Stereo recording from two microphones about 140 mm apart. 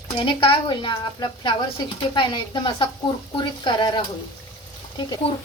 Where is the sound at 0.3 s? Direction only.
40° left (ahead or behind).